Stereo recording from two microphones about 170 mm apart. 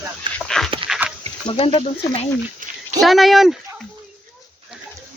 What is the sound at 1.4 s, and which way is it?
Speech, 30° left (ahead or behind).